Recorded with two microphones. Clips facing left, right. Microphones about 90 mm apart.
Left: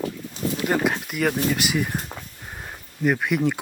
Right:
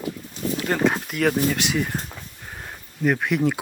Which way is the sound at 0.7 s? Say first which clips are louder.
Right 3 dB; 5° left (ahead or behind).